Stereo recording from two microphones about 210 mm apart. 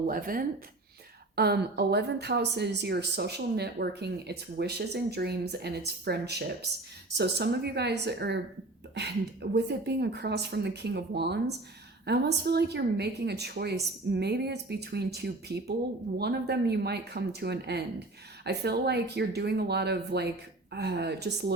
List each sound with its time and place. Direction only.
0.1 s a woman's voice: 45° right (ahead or behind)